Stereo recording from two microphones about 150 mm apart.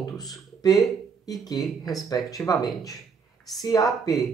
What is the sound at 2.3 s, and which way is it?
Speech, 25° left (ahead or behind).